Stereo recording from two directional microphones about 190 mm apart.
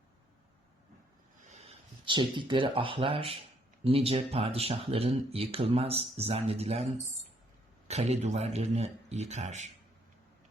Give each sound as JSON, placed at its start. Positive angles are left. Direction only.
{"t": 1.5, "sound": "speech", "side_deg": -30}
{"t": 7.9, "sound": "speech", "side_deg": -35}